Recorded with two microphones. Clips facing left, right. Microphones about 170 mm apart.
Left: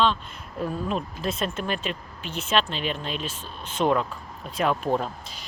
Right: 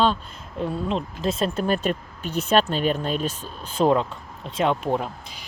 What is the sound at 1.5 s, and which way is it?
Speech, 40° right (ahead or behind).